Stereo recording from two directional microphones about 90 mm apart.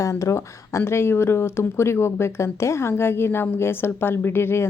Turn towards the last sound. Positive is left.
turn(degrees=25)  # may be behind; listen again after turning